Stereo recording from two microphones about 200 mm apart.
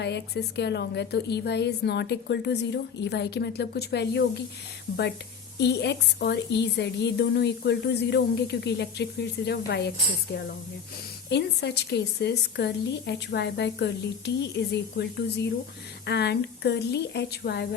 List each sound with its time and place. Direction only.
0.0 s a woman's voice: 55° left (ahead or behind)
5.5 s a woman's voice: 55° left (ahead or behind)
11.3 s a woman's voice: 55° left (ahead or behind)